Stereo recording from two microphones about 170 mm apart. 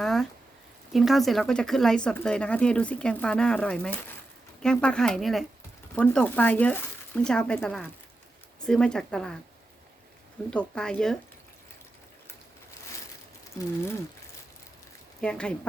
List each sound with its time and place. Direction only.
0.0 s a sound: centre (ahead or behind)
0.9 s speech: centre (ahead or behind)
10.5 s speech: 5° left (ahead or behind)
15.2 s speech: 5° left (ahead or behind)